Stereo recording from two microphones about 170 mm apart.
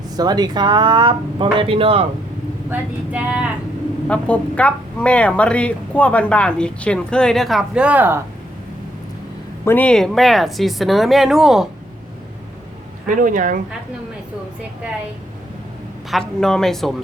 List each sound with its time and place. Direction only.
0.2 s speech: 25° right (ahead or behind)
2.6 s speech: 10° right (ahead or behind)
4.1 s speech: 10° left (ahead or behind); by 8.2 s 10° right (ahead or behind)
9.6 s a woman's voice: 10° left (ahead or behind)
13.1 s speech: 50° right (ahead or behind)
16.4 s a woman's voice: 5° left (ahead or behind)